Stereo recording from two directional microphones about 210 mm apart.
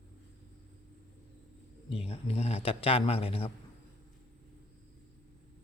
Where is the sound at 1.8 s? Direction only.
30° left (ahead or behind).